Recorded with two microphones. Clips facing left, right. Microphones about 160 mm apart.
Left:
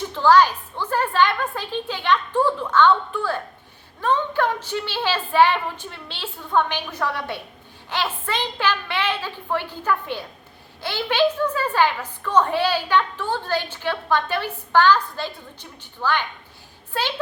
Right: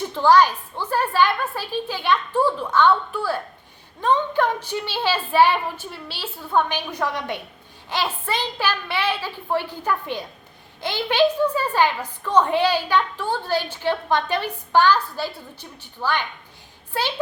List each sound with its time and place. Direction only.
0.1 s a woman's voice: 15° right (ahead or behind)